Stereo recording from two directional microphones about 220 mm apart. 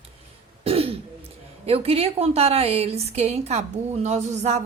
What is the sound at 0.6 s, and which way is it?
Throat clearing, 25° right (ahead or behind).